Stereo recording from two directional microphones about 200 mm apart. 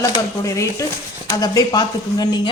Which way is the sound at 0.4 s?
15° left (ahead or behind).